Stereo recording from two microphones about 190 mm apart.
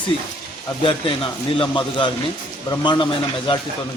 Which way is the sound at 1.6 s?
25° left (ahead or behind).